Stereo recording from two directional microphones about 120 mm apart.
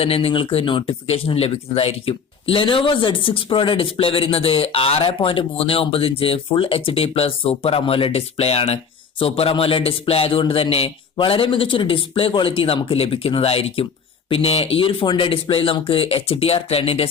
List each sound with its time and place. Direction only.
0.0 s speech: 55° left (ahead or behind)